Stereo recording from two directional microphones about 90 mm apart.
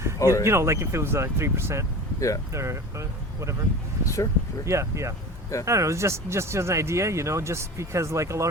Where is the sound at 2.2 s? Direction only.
40° left (ahead or behind).